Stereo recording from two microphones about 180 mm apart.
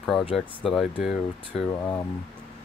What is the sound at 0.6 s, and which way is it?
Speech, centre (ahead or behind).